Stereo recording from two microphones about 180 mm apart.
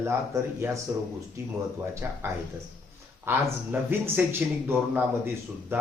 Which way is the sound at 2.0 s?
15° right (ahead or behind).